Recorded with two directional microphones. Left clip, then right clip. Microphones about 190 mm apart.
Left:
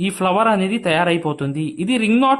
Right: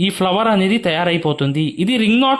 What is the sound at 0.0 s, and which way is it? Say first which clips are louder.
Speech: right 1 dB; 25° right (ahead or behind).